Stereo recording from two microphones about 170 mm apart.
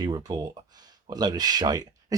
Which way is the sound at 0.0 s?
25° right (ahead or behind).